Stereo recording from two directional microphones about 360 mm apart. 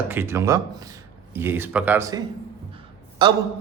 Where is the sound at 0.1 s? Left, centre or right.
Centre.